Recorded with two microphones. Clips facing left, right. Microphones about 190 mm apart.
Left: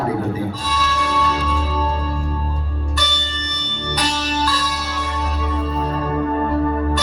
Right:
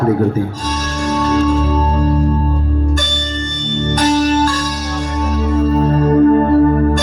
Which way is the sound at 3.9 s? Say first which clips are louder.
Right 10 dB; 45° right (ahead or behind).